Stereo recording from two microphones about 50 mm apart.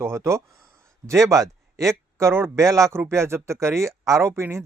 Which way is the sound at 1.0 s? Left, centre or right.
Right.